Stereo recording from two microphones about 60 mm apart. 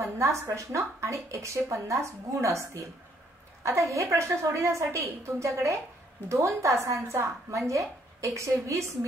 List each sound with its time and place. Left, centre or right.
0.0 s a woman's voice: right